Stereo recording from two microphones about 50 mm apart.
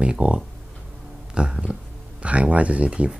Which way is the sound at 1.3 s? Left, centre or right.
Centre.